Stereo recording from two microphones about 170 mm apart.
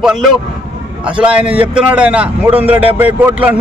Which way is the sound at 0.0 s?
5° right (ahead or behind).